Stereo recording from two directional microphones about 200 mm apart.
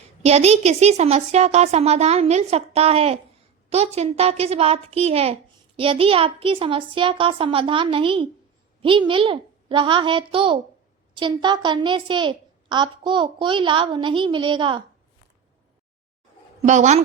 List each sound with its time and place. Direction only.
0.3 s a woman's voice: 30° right (ahead or behind)
16.6 s speech: 35° right (ahead or behind)